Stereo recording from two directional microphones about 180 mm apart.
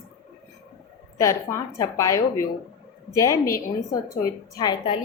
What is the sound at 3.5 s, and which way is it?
A woman's voice, 20° left (ahead or behind).